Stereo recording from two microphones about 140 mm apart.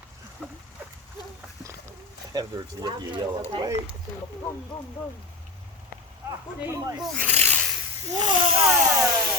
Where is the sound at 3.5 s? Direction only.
35° right (ahead or behind).